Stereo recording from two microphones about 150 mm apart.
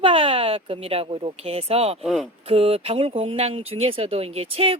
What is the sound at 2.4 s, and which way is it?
Speech, 40° right (ahead or behind).